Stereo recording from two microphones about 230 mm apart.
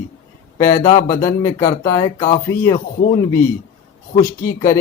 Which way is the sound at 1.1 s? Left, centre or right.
Centre.